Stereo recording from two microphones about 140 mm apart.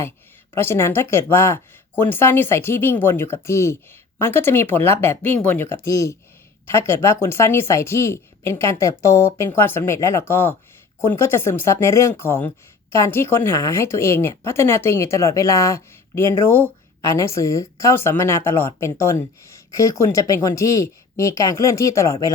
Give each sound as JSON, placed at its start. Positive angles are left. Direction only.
{"t": 0.5, "sound": "speech", "side_deg": 15}